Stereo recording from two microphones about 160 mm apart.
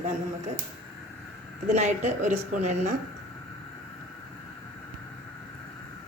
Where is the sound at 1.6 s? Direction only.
45° right (ahead or behind).